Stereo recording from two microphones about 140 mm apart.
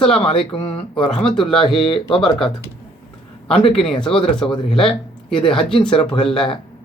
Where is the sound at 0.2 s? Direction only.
40° left (ahead or behind).